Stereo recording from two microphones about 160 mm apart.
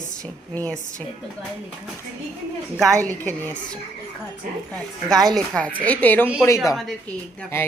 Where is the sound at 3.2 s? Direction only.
15° left (ahead or behind).